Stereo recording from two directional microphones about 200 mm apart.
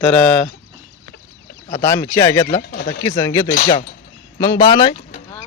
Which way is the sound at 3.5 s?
45° left (ahead or behind).